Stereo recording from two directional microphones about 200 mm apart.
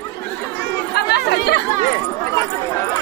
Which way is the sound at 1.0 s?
55° left (ahead or behind).